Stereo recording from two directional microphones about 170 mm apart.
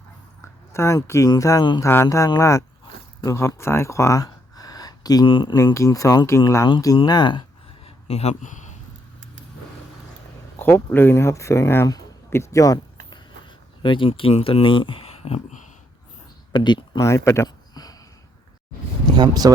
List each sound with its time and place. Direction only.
0.7 s speech: 15° left (ahead or behind)
5.5 s speech: 15° left (ahead or behind)
7.9 s a sound: 40° left (ahead or behind)
10.6 s speech: 10° left (ahead or behind)
13.1 s a sound: 30° left (ahead or behind)
16.5 s speech: 25° left (ahead or behind)
19.1 s speech: 25° right (ahead or behind)